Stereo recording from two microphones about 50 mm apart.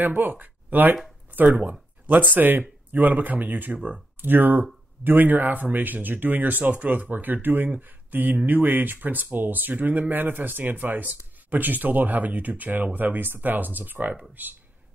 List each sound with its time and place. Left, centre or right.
0.0 s speech: right
4.2 s speech: right